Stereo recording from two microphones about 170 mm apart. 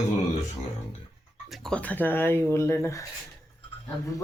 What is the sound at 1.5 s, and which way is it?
Speech, 5° left (ahead or behind).